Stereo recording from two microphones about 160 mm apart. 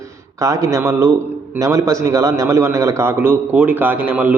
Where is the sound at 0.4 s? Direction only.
20° right (ahead or behind).